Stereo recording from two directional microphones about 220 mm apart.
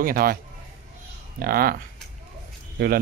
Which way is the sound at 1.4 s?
40° right (ahead or behind).